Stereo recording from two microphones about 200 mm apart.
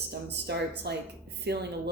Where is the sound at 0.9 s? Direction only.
55° right (ahead or behind).